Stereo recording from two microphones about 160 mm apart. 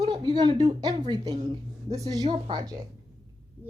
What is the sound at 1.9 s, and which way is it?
Speech, 20° right (ahead or behind).